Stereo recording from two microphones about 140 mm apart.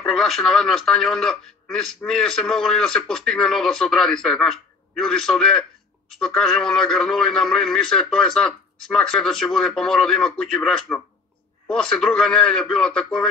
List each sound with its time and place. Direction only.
0.0 s speech: centre (ahead or behind)